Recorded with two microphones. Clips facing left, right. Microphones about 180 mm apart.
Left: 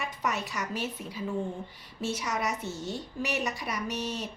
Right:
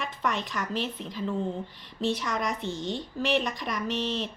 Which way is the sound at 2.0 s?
40° left (ahead or behind).